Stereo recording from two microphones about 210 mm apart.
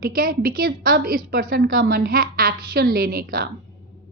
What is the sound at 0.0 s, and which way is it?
A woman's voice, 45° right (ahead or behind).